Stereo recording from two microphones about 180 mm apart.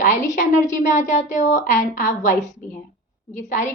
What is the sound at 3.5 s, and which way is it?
Speech, 40° left (ahead or behind).